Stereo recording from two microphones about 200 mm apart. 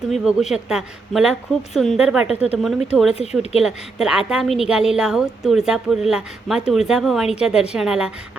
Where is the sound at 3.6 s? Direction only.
Centre (ahead or behind).